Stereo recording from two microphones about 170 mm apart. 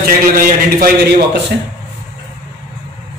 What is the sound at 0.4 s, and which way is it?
Speech, 55° right (ahead or behind).